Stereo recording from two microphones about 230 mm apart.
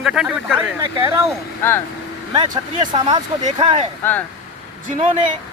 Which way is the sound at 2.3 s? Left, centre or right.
Right.